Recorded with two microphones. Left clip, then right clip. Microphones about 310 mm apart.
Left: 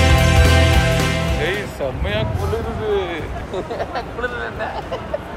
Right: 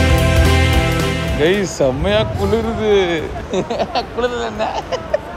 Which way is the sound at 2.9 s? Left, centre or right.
Centre.